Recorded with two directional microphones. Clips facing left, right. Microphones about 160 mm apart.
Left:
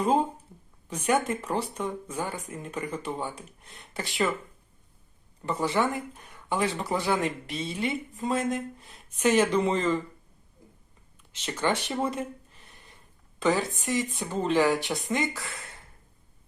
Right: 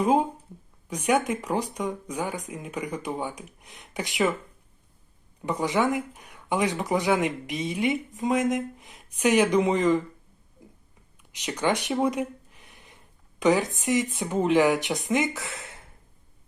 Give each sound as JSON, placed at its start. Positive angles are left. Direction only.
{"t": 0.0, "sound": "speech", "side_deg": -10}
{"t": 5.4, "sound": "speech", "side_deg": -15}
{"t": 11.2, "sound": "speech", "side_deg": -15}
{"t": 11.9, "sound": "a sound", "side_deg": -10}
{"t": 13.4, "sound": "speech", "side_deg": -20}